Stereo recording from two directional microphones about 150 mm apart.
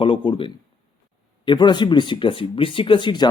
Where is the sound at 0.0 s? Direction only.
35° left (ahead or behind).